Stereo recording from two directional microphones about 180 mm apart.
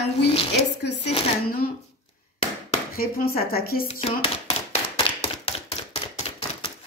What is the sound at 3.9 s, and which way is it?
Hands, 35° left (ahead or behind).